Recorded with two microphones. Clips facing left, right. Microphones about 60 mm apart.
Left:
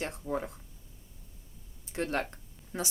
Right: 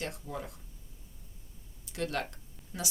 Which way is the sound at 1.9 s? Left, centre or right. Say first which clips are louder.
Left 2 dB; left.